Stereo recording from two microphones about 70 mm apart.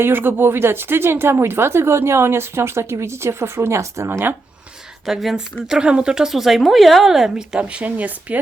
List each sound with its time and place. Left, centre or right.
0.0 s speech: right
5.0 s speech: centre; by 8.4 s right